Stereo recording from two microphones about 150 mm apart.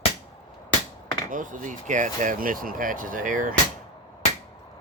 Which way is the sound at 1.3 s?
60° right (ahead or behind).